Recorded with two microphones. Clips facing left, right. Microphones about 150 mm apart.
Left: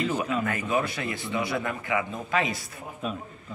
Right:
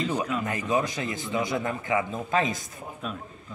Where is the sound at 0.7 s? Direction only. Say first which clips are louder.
Right 2 dB; 20° right (ahead or behind).